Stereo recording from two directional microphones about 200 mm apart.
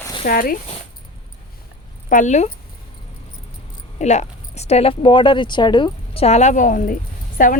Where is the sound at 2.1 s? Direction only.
40° left (ahead or behind).